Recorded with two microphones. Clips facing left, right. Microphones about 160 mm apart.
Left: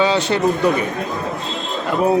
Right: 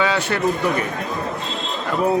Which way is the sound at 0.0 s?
25° left (ahead or behind).